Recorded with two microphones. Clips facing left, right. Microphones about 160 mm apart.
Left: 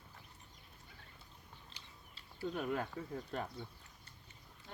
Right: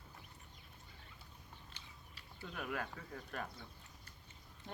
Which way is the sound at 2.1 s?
30° left (ahead or behind).